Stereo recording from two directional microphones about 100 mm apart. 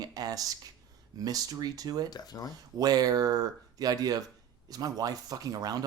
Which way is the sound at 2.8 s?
40° right (ahead or behind).